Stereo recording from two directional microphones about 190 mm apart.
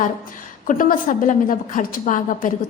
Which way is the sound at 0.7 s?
45° left (ahead or behind).